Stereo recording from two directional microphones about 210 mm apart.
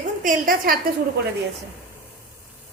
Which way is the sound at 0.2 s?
40° right (ahead or behind).